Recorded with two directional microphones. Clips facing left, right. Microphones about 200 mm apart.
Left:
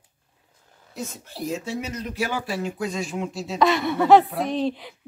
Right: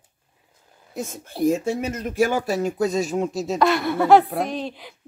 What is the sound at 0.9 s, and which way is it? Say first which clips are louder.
Speech: right 3 dB; 50° right (ahead or behind).